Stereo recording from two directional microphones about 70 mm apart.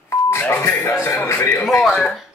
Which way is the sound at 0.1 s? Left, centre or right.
Left.